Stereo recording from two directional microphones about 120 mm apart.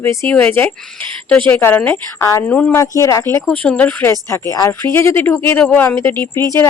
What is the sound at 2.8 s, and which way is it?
Speech, 25° left (ahead or behind).